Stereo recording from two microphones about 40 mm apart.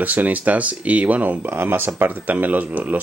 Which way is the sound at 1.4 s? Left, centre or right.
Right.